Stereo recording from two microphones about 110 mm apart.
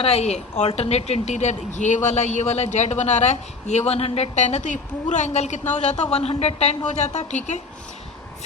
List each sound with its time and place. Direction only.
0.0 s a woman's voice: 75° left (ahead or behind)
0.8 s speech: 75° left (ahead or behind); by 7.6 s 90° left